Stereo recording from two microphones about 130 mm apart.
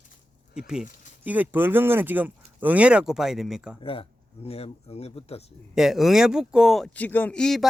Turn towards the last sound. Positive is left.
turn(degrees=5)  # may be behind; listen again after turning